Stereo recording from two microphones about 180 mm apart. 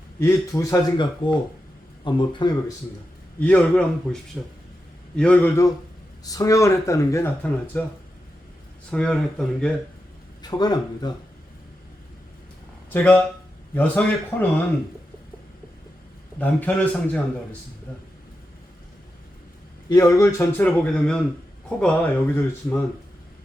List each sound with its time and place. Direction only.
0.2 s speech: 15° left (ahead or behind)
2.0 s speech: 25° left (ahead or behind)
3.4 s speech: 5° left (ahead or behind)
6.2 s speech: 20° left (ahead or behind)
8.9 s speech: 5° left (ahead or behind)
10.4 s speech: 20° left (ahead or behind)
12.9 s speech: 10° left (ahead or behind)
16.4 s speech: 10° left (ahead or behind)
19.9 s speech: 20° left (ahead or behind)